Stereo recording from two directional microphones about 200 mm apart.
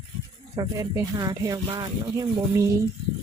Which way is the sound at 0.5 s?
20° right (ahead or behind).